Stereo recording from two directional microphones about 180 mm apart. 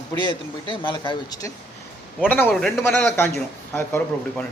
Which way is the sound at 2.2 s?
10° left (ahead or behind).